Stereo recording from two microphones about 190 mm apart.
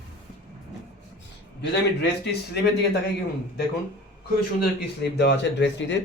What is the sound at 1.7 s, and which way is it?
Speech, 65° left (ahead or behind).